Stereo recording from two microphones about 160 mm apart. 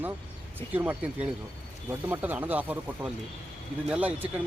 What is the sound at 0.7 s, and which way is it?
Speech, 10° right (ahead or behind).